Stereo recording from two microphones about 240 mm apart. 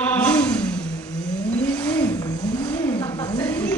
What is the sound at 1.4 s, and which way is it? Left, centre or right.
Vehicle, centre.